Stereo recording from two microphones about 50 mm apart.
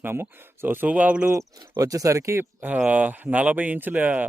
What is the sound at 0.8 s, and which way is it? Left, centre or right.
Speech, right.